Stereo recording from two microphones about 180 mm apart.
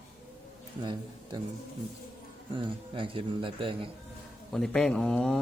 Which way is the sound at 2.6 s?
30° right (ahead or behind).